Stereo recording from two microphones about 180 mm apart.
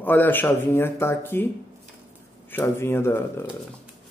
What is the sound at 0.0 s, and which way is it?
Speech, 10° left (ahead or behind).